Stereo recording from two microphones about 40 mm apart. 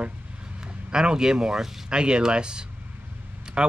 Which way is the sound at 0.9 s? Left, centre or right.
Centre.